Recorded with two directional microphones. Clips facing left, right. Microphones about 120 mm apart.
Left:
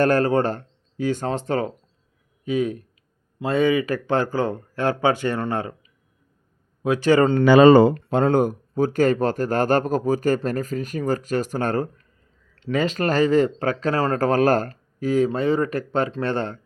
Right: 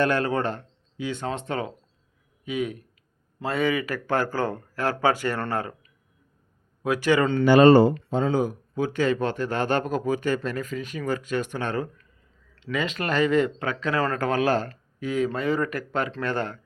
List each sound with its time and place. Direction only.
0.0 s speech: 40° left (ahead or behind)
3.4 s speech: 20° left (ahead or behind)
6.8 s speech: 25° left (ahead or behind)
8.1 s speech: 60° left (ahead or behind)
8.7 s speech: 40° left (ahead or behind)